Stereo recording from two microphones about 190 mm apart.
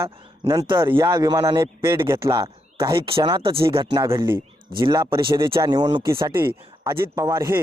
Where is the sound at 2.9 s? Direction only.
30° right (ahead or behind).